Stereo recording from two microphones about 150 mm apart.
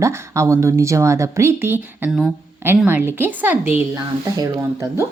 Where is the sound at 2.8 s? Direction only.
15° right (ahead or behind).